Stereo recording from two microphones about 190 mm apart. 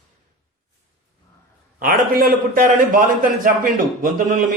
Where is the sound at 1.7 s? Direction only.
50° right (ahead or behind).